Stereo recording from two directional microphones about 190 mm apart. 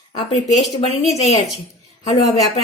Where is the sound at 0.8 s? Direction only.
35° left (ahead or behind).